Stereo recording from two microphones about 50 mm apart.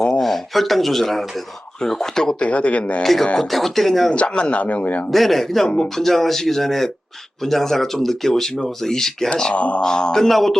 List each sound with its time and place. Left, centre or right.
0.0 s speech: centre
2.4 s a man's voice: left
3.0 s speech: centre
4.1 s a man's voice: left
5.1 s speech: centre
5.6 s a man's voice: left
6.0 s speech: centre
9.6 s a man's voice: left
9.8 s speech: centre
10.2 s speech: centre